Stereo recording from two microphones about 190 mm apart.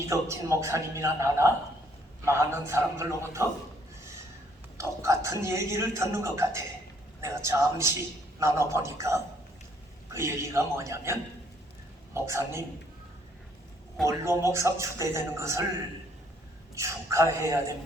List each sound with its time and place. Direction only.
0.1 s a man's voice: 15° right (ahead or behind)
4.8 s a man's voice: 15° right (ahead or behind)
14.1 s a man's voice: 15° right (ahead or behind)
16.7 s a man's voice: 15° right (ahead or behind)